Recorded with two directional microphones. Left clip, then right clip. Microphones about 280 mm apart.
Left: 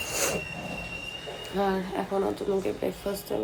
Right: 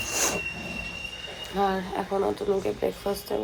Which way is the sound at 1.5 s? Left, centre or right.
Centre.